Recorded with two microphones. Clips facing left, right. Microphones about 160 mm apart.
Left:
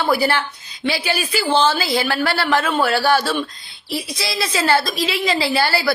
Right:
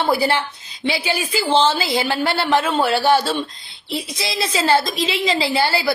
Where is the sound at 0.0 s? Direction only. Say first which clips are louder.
Even; 25° right (ahead or behind).